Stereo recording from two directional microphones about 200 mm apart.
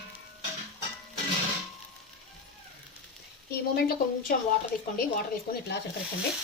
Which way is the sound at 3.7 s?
45° left (ahead or behind).